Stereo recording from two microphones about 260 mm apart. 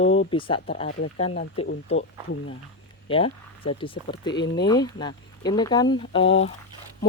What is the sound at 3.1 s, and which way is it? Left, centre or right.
Speech, left.